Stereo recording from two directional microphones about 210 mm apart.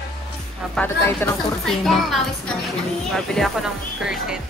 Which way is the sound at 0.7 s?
5° left (ahead or behind).